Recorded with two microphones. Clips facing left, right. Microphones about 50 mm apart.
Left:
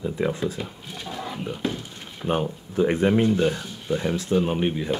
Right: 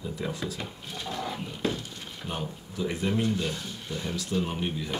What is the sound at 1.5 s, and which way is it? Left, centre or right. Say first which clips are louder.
Speech: left 4 dB; left.